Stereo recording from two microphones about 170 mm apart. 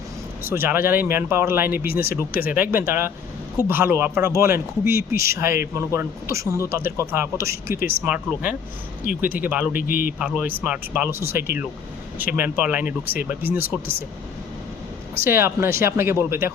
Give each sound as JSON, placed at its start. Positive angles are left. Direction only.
{"t": 0.4, "sound": "a man's voice", "side_deg": -15}
{"t": 1.9, "sound": "speech", "side_deg": 60}
{"t": 2.5, "sound": "a man's voice", "side_deg": -10}
{"t": 7.8, "sound": "speech", "side_deg": 60}
{"t": 8.0, "sound": "a man's voice", "side_deg": -10}
{"t": 9.7, "sound": "speech", "side_deg": 55}
{"t": 10.2, "sound": "a man's voice", "side_deg": -10}
{"t": 15.2, "sound": "a man's voice", "side_deg": -15}